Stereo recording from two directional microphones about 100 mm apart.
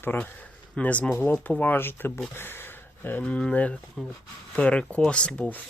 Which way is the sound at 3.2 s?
10° left (ahead or behind).